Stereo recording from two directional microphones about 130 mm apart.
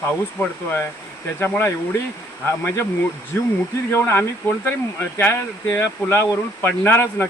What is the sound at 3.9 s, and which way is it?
Speech, 20° left (ahead or behind).